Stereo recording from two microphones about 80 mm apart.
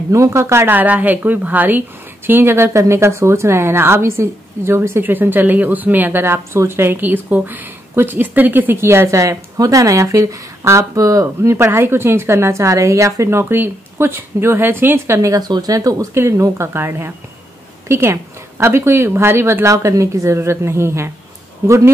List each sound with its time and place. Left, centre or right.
0.1 s a woman's voice: right
11.5 s a woman's voice: right
15.1 s speech: right
16.2 s a woman's voice: right